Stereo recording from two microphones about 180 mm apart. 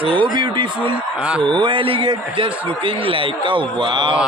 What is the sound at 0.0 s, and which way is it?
Speech, 30° right (ahead or behind).